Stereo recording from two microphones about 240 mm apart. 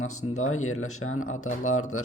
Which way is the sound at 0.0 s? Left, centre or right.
Left.